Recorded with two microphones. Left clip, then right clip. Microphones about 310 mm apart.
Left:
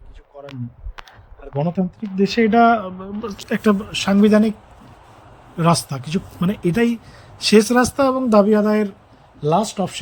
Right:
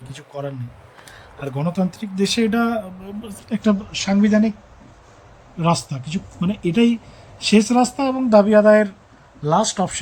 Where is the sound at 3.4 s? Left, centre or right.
Left.